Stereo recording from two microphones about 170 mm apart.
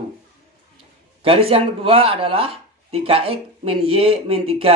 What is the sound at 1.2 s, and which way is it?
Speech, 35° right (ahead or behind).